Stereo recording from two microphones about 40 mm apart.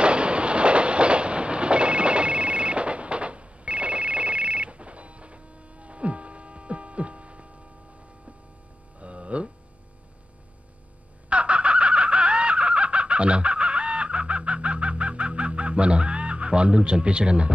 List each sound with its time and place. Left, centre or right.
0.0 s train: right
9.0 s a sound: right
11.2 s fowl: right